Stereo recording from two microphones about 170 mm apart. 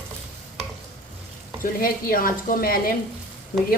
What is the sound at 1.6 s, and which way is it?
A woman's voice, 60° left (ahead or behind).